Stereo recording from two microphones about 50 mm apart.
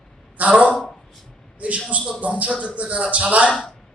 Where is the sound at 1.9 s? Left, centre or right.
Right.